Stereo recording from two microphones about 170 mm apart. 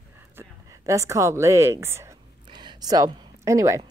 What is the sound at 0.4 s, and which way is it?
A woman's voice, 15° right (ahead or behind).